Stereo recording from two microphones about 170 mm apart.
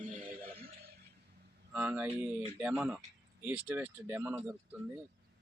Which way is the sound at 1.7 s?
5° right (ahead or behind).